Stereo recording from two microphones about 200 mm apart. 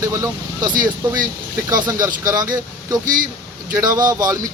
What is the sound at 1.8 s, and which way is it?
Speech, 20° right (ahead or behind).